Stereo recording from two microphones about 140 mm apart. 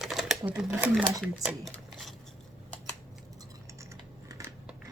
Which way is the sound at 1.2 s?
Centre (ahead or behind).